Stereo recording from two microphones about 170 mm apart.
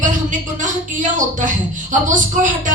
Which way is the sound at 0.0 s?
50° right (ahead or behind).